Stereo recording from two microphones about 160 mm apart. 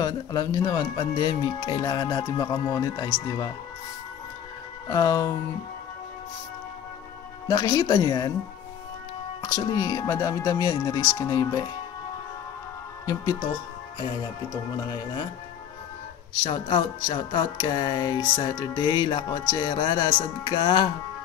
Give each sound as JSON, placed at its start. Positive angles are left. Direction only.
{"t": 0.0, "sound": "speech", "side_deg": 25}
{"t": 4.8, "sound": "speech", "side_deg": 25}
{"t": 7.4, "sound": "speech", "side_deg": 25}
{"t": 9.5, "sound": "speech", "side_deg": 25}
{"t": 13.0, "sound": "speech", "side_deg": 20}
{"t": 16.4, "sound": "speech", "side_deg": 25}